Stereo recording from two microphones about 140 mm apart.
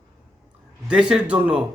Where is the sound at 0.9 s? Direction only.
5° right (ahead or behind).